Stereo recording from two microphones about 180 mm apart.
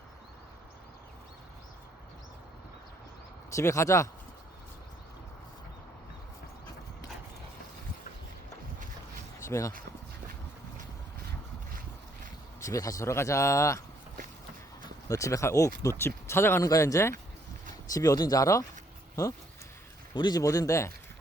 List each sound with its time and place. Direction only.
3.5 s speech: 15° left (ahead or behind)
9.4 s speech: 15° left (ahead or behind)
12.5 s speech: 15° left (ahead or behind)
15.0 s speech: 20° left (ahead or behind)